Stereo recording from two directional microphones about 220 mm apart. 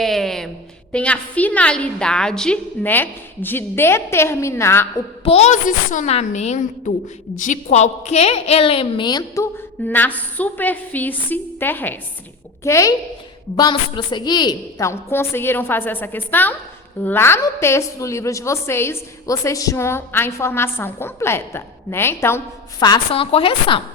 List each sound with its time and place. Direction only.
0.0 s a sound: centre (ahead or behind)
0.9 s a woman's voice: 5° left (ahead or behind)
5.2 s a woman's voice: 30° left (ahead or behind); by 22.4 s 10° left (ahead or behind)
22.8 s a woman's voice: 20° left (ahead or behind)